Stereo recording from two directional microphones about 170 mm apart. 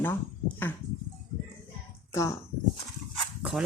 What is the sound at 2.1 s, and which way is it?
Speech, 20° left (ahead or behind).